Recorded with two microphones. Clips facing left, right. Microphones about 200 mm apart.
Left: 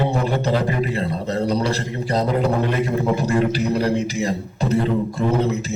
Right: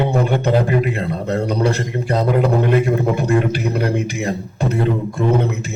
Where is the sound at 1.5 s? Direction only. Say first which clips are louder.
Right 3 dB; 55° right (ahead or behind).